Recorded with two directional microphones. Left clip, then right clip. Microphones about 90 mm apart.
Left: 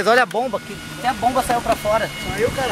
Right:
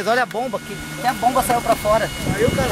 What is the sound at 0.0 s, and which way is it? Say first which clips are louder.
Speech: left 3 dB; 20° left (ahead or behind).